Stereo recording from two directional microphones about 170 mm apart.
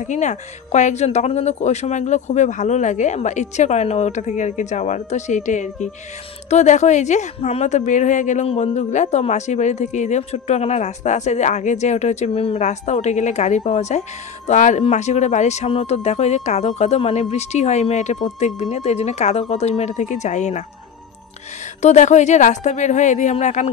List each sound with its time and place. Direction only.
0.0 s speech: 45° left (ahead or behind)
21.8 s speech: 45° left (ahead or behind)